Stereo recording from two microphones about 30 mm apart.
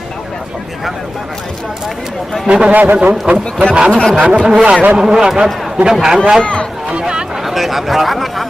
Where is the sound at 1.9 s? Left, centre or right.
Centre.